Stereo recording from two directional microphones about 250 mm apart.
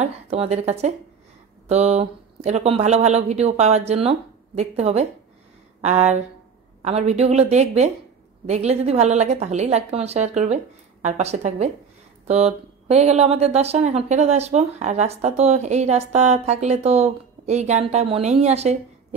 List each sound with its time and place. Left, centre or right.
0.0 s speech: right